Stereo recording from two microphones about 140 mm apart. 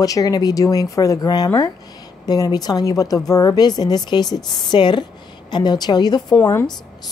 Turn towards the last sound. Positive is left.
turn(degrees=25)  # may be behind; listen again after turning